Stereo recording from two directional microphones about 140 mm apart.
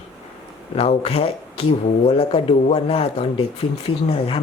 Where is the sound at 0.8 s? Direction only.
45° left (ahead or behind).